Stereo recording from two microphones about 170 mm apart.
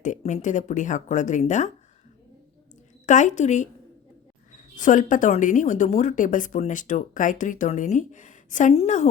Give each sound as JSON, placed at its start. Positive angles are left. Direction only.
{"t": 0.0, "sound": "a woman's voice", "side_deg": 45}
{"t": 3.1, "sound": "a woman's voice", "side_deg": 45}
{"t": 4.8, "sound": "a woman's voice", "side_deg": 50}